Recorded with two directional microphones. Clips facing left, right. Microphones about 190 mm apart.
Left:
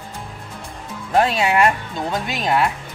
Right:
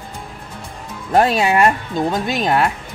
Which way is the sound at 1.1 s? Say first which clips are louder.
Right 2 dB; 40° right (ahead or behind).